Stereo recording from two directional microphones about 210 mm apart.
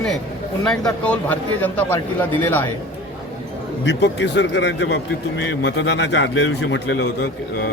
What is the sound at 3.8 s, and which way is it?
Speech, 55° left (ahead or behind).